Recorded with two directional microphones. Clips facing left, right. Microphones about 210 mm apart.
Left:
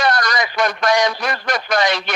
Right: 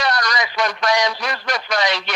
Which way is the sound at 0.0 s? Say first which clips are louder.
Left 3 dB; 50° left (ahead or behind).